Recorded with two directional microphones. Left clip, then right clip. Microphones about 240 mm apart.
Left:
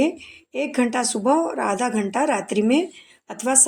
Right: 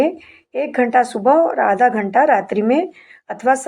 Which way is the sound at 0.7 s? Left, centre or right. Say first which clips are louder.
Right 9 dB; left.